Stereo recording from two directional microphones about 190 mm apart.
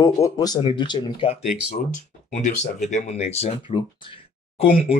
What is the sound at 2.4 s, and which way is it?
Speech, 40° left (ahead or behind).